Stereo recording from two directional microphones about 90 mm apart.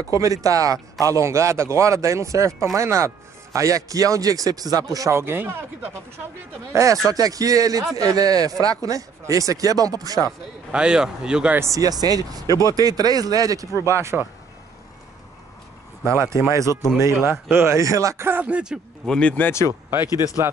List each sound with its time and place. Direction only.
0.2 s speech: 40° right (ahead or behind)
5.1 s speech: 25° right (ahead or behind)
6.7 s speech: 35° right (ahead or behind)
10.7 s speech: 10° right (ahead or behind)
11.6 s speech: 40° right (ahead or behind)
14.1 s speech: centre (ahead or behind)
16.0 s speech: 30° right (ahead or behind)
19.0 s speech: 10° left (ahead or behind)
19.7 s speech: 30° right (ahead or behind)